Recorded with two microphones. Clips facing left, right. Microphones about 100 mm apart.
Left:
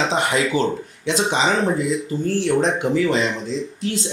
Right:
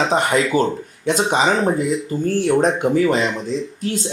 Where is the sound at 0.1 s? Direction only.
45° right (ahead or behind).